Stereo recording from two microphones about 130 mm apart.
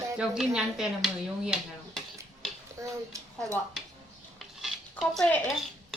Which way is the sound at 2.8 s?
25° right (ahead or behind).